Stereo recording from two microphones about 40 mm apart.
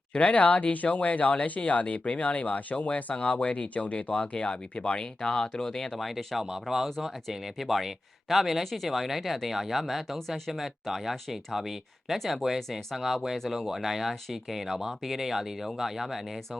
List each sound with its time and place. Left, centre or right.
0.2 s speech: left; by 12.5 s centre
13.7 s speech: centre